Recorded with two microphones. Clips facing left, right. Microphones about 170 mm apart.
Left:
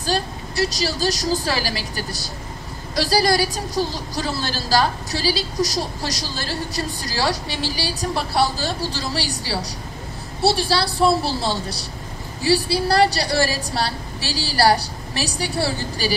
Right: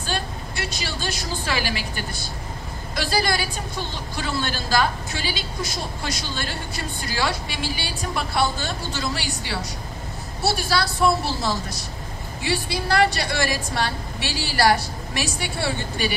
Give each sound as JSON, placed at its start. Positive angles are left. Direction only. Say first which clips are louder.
{"t": 0.0, "sound": "a woman's voice", "louder": "left 5 dB", "side_deg": 35}